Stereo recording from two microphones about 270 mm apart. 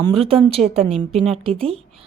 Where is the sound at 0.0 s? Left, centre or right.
Right.